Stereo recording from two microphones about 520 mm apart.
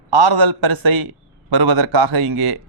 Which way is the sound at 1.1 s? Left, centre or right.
Right.